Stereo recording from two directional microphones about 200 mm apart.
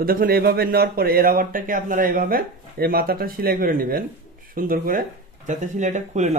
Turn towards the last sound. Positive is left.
turn(degrees=-35)  # may be behind; listen again after turning